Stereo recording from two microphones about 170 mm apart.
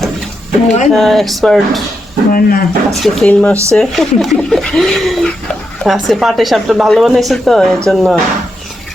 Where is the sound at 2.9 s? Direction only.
Centre (ahead or behind).